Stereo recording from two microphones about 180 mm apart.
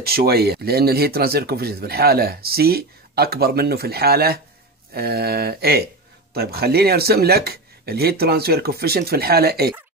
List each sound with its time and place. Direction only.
0.0 s speech: 60° right (ahead or behind)